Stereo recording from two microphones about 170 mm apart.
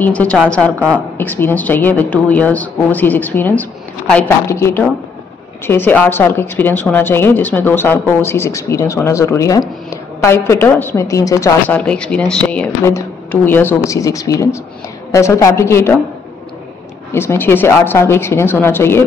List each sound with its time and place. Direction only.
0.0 s a woman's voice: 10° left (ahead or behind)
0.7 s a woman's voice: 10° right (ahead or behind)
1.1 s a woman's voice: 10° left (ahead or behind)
11.8 s a woman's voice: 5° left (ahead or behind)
17.1 s a woman's voice: 15° left (ahead or behind)